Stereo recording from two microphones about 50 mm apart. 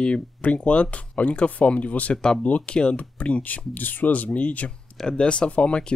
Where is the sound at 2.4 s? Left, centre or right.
Left.